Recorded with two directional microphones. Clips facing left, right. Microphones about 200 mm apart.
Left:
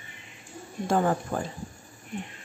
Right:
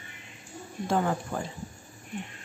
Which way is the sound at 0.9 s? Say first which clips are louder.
Left 3 dB; 45° left (ahead or behind).